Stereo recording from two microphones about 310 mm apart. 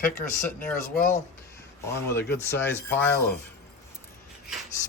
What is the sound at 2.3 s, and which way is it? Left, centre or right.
Speech, centre.